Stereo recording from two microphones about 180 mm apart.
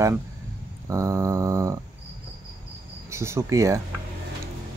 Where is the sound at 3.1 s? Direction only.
15° right (ahead or behind).